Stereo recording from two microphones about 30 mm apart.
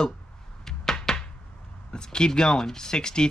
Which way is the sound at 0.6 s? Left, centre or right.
Centre.